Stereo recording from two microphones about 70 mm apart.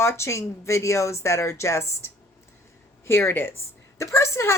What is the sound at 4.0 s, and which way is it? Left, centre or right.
Speech, left.